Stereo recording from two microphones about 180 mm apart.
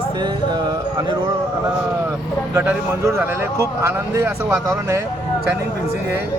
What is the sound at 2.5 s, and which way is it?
Speech, 15° right (ahead or behind).